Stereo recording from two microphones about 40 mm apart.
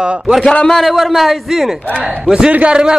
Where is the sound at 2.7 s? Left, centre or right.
Right.